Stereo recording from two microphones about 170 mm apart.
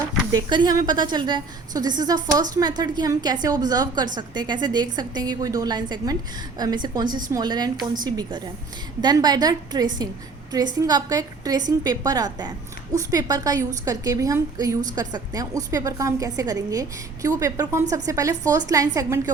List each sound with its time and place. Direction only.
0.3 s a woman's voice: 25° right (ahead or behind)